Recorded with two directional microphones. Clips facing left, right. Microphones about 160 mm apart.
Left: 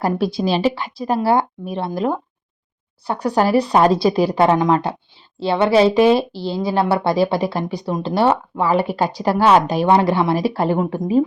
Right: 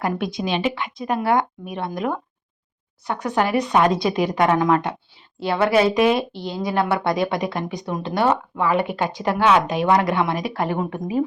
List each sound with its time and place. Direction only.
0.0 s a woman's voice: 35° left (ahead or behind)